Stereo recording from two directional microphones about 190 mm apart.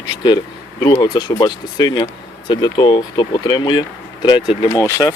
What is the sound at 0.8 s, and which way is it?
Speech, 20° left (ahead or behind).